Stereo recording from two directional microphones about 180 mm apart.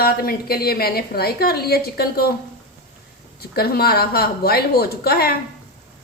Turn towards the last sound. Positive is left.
turn(degrees=60)  # may be behind; listen again after turning